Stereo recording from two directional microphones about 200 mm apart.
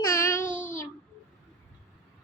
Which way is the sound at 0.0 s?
15° left (ahead or behind).